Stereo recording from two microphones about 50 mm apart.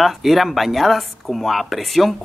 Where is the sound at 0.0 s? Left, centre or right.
Centre.